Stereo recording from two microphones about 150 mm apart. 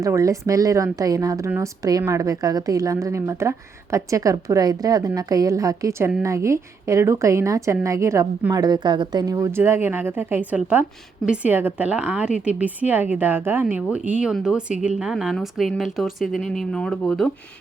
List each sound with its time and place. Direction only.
0.0 s a woman's voice: 20° right (ahead or behind); by 17.2 s 5° left (ahead or behind)